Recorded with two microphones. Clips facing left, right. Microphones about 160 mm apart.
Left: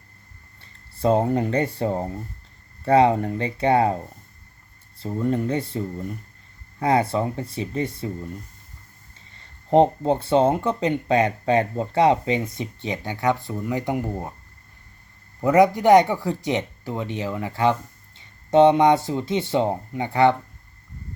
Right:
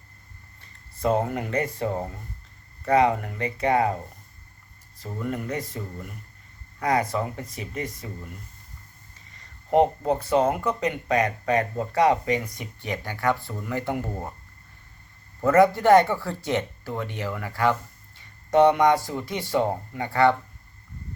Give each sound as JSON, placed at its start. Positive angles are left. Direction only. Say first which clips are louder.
{"t": 0.6, "sound": "speech", "louder": "left 3 dB", "side_deg": 30}
{"t": 4.9, "sound": "speech", "louder": "left 7 dB", "side_deg": 30}
{"t": 9.6, "sound": "speech", "louder": "left 3 dB", "side_deg": 30}
{"t": 15.4, "sound": "speech", "louder": "left 1 dB", "side_deg": 15}